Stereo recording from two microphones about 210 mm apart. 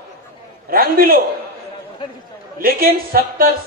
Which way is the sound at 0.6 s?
45° right (ahead or behind).